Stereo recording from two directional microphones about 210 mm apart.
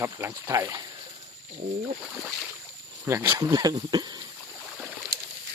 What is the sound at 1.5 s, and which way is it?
Speech, 35° right (ahead or behind).